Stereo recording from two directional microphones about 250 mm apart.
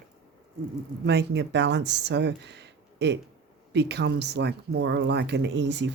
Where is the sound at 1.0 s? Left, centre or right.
Right.